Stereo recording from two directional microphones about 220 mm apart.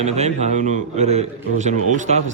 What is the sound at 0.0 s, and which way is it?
A man's voice, 30° right (ahead or behind).